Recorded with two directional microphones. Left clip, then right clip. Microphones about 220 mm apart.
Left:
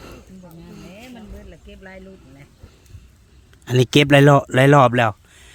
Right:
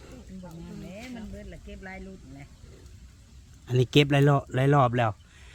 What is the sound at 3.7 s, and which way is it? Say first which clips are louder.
Speech: left 8 dB; 40° left (ahead or behind).